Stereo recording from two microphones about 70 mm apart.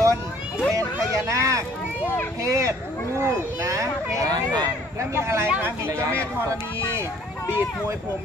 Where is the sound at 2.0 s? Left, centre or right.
Left.